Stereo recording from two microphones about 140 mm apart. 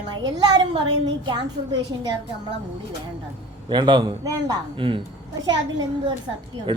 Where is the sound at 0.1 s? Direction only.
30° right (ahead or behind).